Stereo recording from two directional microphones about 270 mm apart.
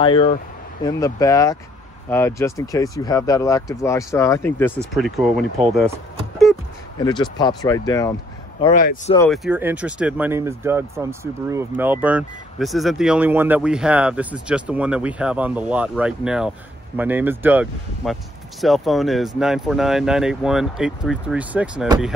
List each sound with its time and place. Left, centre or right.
0.0 s speech: centre
5.9 s a sound: centre
7.0 s speech: centre
9.3 s speech: centre